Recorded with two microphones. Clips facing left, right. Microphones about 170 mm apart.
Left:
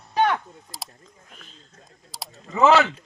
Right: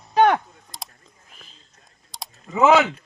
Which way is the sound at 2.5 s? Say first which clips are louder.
Right 1 dB; 15° right (ahead or behind).